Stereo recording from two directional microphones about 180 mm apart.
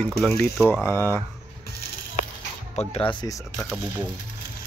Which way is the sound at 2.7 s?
30° left (ahead or behind).